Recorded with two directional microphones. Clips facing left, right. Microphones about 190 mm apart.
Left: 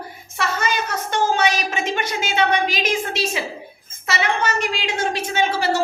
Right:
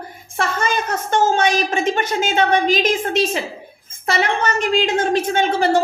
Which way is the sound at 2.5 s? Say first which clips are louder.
Right 5 dB; 10° left (ahead or behind).